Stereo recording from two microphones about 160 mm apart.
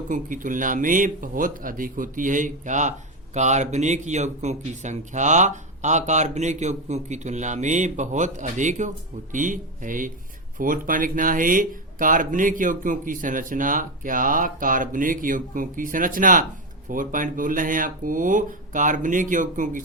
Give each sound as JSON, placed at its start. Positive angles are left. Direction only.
{"t": 0.1, "sound": "speech", "side_deg": -55}